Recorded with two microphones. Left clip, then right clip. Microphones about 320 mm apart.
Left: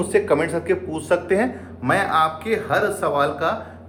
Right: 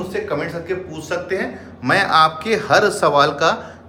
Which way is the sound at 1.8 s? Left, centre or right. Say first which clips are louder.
Right 4 dB; centre.